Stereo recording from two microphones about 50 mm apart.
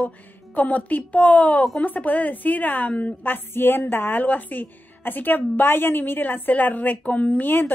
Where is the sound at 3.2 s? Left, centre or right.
Left.